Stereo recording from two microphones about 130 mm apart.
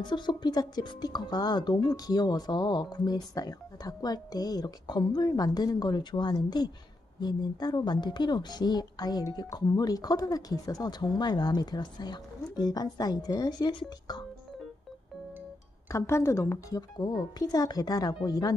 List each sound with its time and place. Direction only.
0.0 s a woman's voice: 35° left (ahead or behind)
15.9 s speech: 20° left (ahead or behind)